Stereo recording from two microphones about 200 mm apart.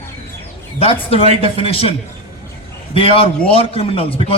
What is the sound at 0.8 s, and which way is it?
A man's voice, 30° left (ahead or behind).